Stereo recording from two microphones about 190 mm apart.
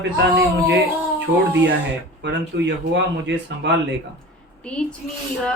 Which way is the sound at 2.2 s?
65° right (ahead or behind).